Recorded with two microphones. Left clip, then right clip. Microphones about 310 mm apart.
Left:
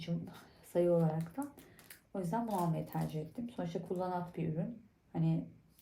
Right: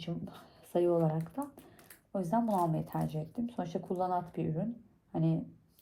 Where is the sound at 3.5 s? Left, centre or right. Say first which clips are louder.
Right 2 dB; centre.